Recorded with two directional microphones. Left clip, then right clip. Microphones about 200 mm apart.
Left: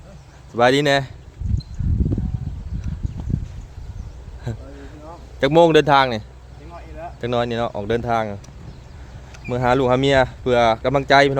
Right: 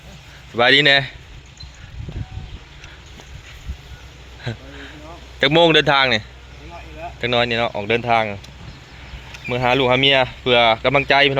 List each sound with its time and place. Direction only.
0.5 s speech: 15° left (ahead or behind)
5.5 s speech: 5° left (ahead or behind)
9.5 s speech: 20° left (ahead or behind)